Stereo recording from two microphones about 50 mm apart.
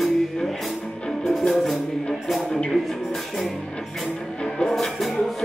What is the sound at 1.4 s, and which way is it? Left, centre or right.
Music, centre.